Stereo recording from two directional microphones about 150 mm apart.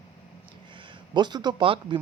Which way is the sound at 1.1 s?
30° right (ahead or behind).